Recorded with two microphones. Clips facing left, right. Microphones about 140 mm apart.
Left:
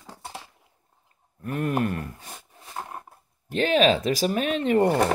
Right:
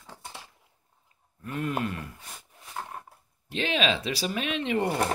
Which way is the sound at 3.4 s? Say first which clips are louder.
Left 7 dB; 45° left (ahead or behind).